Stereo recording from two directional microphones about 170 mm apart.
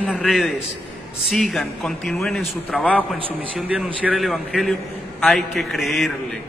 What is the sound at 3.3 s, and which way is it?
A man's voice, 5° right (ahead or behind).